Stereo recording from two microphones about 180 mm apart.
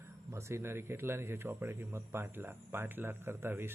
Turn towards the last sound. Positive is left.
turn(degrees=-10)  # may be behind; listen again after turning